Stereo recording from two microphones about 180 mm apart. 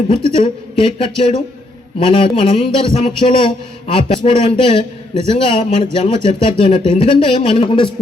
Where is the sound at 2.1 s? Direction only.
30° left (ahead or behind).